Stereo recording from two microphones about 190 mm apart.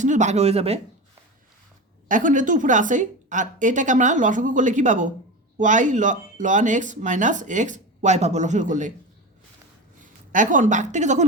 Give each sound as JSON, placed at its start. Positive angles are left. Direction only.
{"t": 0.0, "sound": "speech", "side_deg": -40}
{"t": 2.0, "sound": "speech", "side_deg": -45}
{"t": 10.3, "sound": "speech", "side_deg": -45}